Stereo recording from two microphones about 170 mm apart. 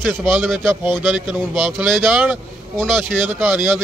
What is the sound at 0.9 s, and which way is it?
A man's voice, centre (ahead or behind).